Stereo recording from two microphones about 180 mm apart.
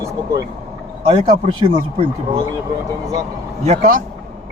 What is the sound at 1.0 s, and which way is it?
Speech, 30° right (ahead or behind).